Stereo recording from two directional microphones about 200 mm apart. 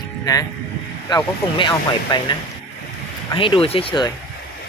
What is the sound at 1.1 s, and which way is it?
Speech, 25° left (ahead or behind).